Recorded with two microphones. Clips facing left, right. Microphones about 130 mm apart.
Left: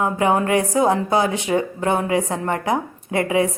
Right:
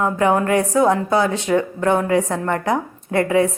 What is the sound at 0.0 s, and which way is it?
Speech, 15° left (ahead or behind).